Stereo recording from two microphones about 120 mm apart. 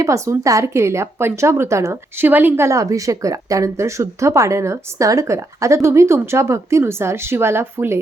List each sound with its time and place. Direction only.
0.0 s a woman's voice: 25° right (ahead or behind)